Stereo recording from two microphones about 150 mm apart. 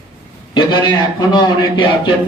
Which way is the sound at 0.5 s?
30° left (ahead or behind).